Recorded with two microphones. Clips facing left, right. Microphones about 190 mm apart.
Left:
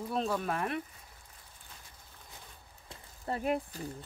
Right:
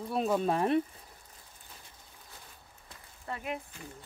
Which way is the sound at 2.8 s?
35° left (ahead or behind).